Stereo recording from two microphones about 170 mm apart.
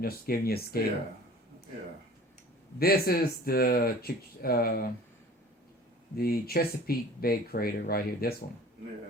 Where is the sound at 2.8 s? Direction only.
65° left (ahead or behind).